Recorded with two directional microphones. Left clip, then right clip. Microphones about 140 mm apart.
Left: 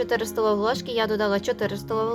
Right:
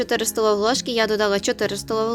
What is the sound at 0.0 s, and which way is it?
A woman's voice, 45° right (ahead or behind).